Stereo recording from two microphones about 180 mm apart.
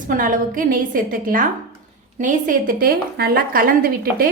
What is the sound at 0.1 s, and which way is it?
A woman's voice, 50° right (ahead or behind).